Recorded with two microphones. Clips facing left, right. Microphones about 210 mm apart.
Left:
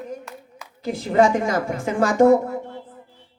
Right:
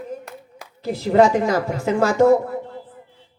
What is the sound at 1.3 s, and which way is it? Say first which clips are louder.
A woman's voice: right 2 dB; 50° left (ahead or behind).